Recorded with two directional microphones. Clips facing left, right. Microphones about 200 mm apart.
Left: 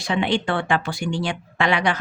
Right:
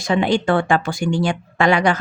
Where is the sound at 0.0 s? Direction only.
45° right (ahead or behind).